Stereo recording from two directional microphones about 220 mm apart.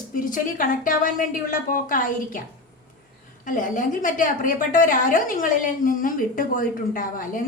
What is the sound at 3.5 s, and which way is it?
A woman's voice, 35° left (ahead or behind).